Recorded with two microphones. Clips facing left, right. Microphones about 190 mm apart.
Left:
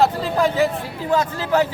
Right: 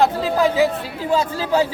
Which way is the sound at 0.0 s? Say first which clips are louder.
Right 1 dB; centre (ahead or behind).